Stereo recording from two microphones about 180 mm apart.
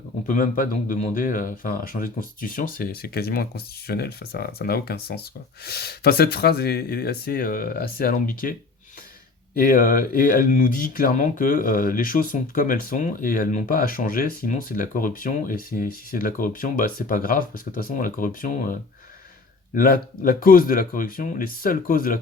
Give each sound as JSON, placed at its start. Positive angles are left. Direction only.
{"t": 0.3, "sound": "speech", "side_deg": 50}
{"t": 9.6, "sound": "speech", "side_deg": 50}